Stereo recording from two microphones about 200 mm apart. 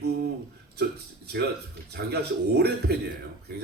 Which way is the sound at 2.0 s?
55° right (ahead or behind).